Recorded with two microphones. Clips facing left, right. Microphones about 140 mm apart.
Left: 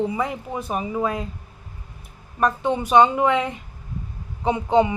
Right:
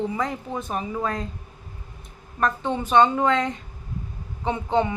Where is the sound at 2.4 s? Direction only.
10° left (ahead or behind).